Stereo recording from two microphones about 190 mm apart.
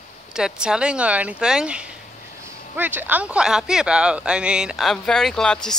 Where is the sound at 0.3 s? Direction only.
5° right (ahead or behind).